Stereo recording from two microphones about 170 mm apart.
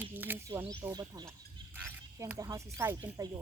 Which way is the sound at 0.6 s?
20° right (ahead or behind).